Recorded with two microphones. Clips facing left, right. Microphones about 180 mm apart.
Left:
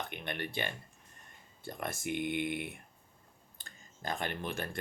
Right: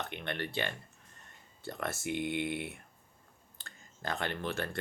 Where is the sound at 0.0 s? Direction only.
15° left (ahead or behind).